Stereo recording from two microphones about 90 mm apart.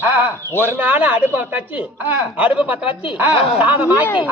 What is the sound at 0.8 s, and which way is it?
Speech, 15° right (ahead or behind).